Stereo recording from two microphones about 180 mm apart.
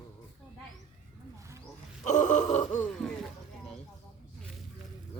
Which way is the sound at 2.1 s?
45° left (ahead or behind).